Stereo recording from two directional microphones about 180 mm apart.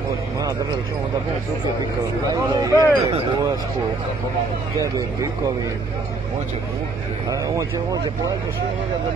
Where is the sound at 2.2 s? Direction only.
20° right (ahead or behind).